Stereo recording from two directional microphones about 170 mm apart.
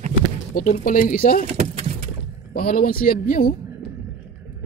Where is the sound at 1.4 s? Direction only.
35° right (ahead or behind).